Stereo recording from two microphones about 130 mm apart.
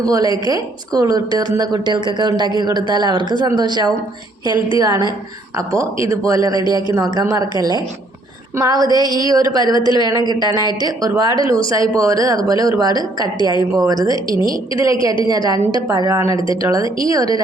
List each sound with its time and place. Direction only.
0.0 s a woman's voice: 25° right (ahead or behind)
6.5 s speech: 35° left (ahead or behind)
6.9 s a woman's voice: 25° right (ahead or behind)